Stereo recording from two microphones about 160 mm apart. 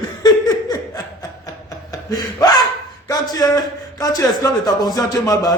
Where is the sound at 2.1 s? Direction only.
25° left (ahead or behind).